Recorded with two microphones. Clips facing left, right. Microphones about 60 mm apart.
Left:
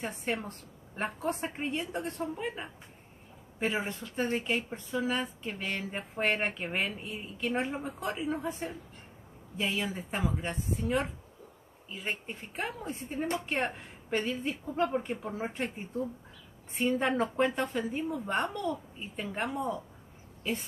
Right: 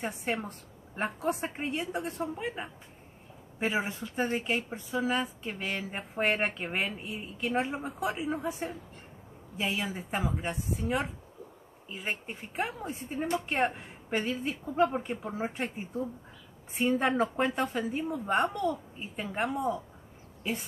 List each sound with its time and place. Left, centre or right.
0.0 s speech: centre
0.5 s a woman's voice: centre